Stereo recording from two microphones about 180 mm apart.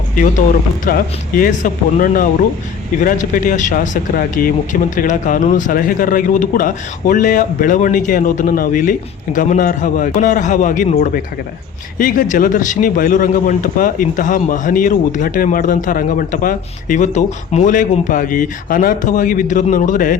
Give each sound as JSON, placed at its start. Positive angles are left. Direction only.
{"t": 0.9, "sound": "speech", "side_deg": 50}